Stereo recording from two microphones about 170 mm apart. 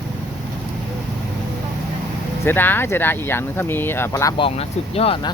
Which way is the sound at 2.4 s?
10° left (ahead or behind).